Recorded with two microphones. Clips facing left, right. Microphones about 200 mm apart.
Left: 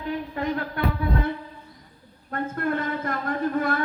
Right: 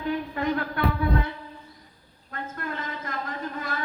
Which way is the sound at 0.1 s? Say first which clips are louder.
Even; 30° left (ahead or behind).